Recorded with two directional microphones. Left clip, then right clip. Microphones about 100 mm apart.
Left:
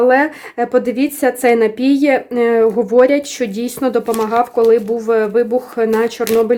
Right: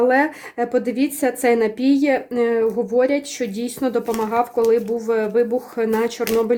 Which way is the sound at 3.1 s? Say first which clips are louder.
Left 6 dB; 30° left (ahead or behind).